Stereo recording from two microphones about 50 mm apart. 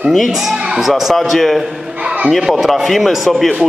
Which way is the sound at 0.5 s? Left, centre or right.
Centre.